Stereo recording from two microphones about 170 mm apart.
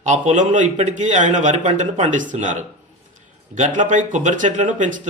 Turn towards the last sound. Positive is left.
turn(degrees=-50)  # may be behind; listen again after turning